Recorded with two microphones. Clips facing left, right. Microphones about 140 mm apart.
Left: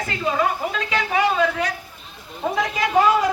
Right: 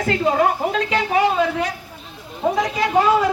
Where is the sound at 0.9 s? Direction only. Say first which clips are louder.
Right 1 dB; 30° right (ahead or behind).